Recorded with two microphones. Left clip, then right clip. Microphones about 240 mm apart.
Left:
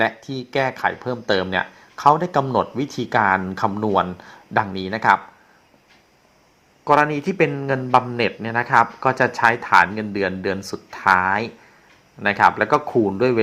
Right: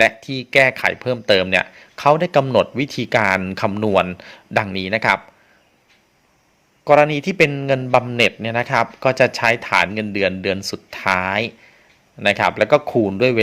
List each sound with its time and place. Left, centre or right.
0.0 s speech: right
6.8 s a man's voice: right